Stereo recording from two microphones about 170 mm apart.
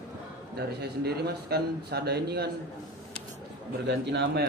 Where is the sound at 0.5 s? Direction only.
70° right (ahead or behind).